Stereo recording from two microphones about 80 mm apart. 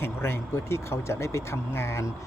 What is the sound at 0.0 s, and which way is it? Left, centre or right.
Speech, left.